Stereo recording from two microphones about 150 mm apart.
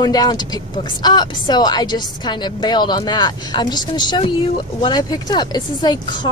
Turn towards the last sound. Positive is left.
turn(degrees=30)  # may be behind; listen again after turning